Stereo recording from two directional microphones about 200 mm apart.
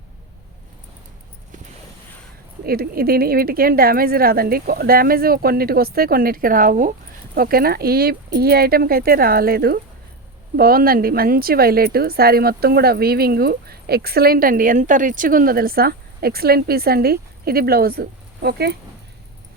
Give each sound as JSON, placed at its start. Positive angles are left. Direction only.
{"t": 2.6, "sound": "a woman's voice", "side_deg": -50}